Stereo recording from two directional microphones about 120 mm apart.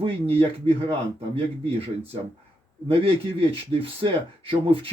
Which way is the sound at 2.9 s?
50° right (ahead or behind).